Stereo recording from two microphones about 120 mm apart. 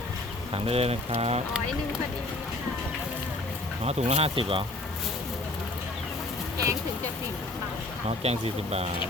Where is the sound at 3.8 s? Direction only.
60° right (ahead or behind).